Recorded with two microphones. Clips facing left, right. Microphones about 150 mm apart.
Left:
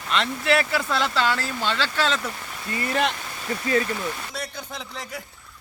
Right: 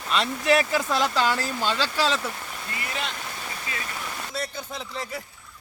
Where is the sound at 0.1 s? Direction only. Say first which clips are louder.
Even; 15° right (ahead or behind).